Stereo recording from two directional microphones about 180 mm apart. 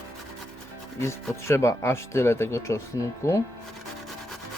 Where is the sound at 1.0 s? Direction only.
15° left (ahead or behind).